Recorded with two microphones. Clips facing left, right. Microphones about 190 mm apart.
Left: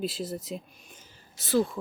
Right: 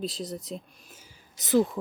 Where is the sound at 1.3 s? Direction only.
20° right (ahead or behind).